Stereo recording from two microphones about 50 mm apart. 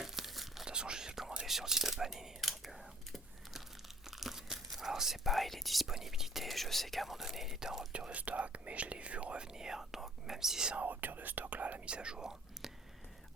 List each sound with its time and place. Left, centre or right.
0.0 s tearing: centre
0.6 s whispering: centre
4.0 s speech: centre
7.9 s speech: right
10.8 s speech: right; by 12.7 s centre